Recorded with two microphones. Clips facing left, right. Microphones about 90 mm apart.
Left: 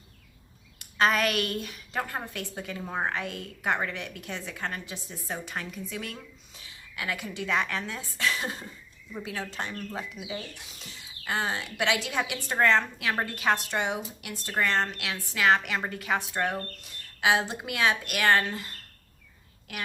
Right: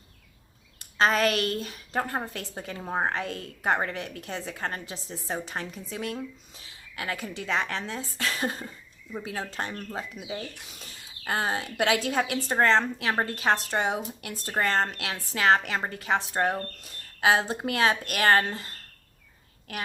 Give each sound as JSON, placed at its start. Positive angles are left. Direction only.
{"t": 0.9, "sound": "a woman's voice", "side_deg": -30}